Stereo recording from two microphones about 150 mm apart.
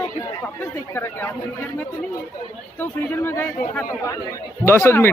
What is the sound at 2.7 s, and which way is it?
Speech, 15° left (ahead or behind).